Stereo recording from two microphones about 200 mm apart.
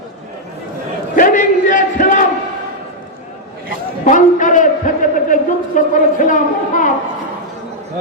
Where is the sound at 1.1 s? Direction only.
40° left (ahead or behind).